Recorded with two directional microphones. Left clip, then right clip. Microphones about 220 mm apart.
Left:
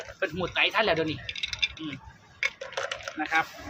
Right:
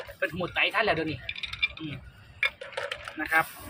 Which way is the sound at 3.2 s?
20° left (ahead or behind).